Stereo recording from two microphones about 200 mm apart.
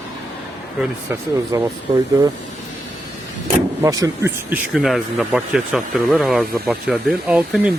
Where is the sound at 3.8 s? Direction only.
15° right (ahead or behind).